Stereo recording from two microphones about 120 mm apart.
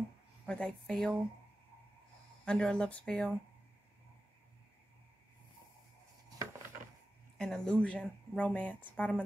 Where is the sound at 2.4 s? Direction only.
10° left (ahead or behind).